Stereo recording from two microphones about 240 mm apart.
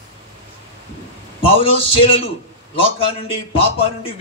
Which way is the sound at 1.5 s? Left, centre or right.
Left.